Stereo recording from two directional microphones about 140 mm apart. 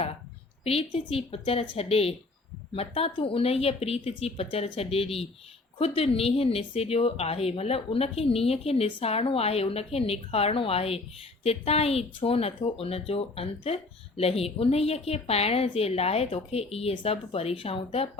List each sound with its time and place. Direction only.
0.6 s speech: 45° left (ahead or behind)